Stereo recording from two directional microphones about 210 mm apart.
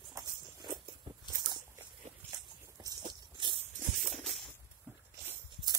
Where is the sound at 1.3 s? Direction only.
20° right (ahead or behind).